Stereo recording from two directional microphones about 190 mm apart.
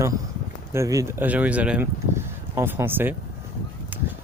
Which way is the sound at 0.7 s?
15° right (ahead or behind).